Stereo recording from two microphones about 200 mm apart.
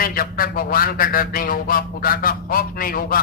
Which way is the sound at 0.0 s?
45° left (ahead or behind).